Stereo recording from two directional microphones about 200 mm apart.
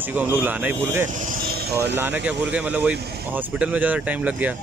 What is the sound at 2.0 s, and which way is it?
Speech, 10° right (ahead or behind).